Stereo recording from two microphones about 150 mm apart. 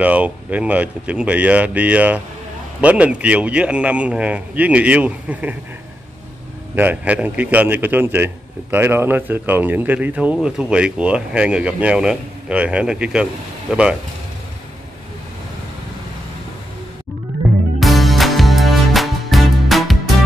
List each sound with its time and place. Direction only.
0.0 s a man's voice: 10° right (ahead or behind)
6.7 s a man's voice: 10° right (ahead or behind)
17.7 s music: centre (ahead or behind)